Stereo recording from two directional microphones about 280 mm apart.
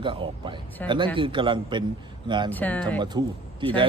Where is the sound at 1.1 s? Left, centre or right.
Centre.